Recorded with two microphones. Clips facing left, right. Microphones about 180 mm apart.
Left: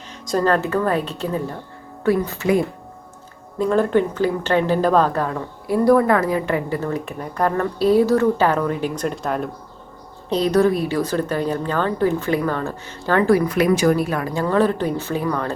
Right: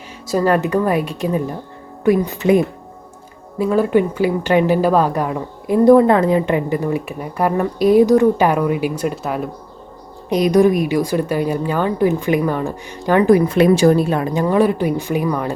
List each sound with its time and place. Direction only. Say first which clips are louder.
0.3 s speech: right 3 dB; 10° right (ahead or behind)
3.6 s speech: right 2 dB; 5° right (ahead or behind)